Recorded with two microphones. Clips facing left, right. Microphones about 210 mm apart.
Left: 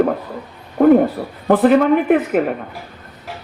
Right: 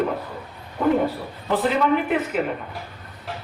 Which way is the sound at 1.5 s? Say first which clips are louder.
Left 8 dB; 55° left (ahead or behind).